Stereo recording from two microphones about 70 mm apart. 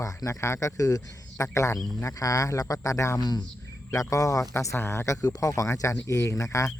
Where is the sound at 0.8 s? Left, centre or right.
Left.